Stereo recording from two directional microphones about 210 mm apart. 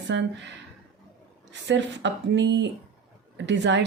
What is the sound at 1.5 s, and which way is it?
Speech, 60° right (ahead or behind).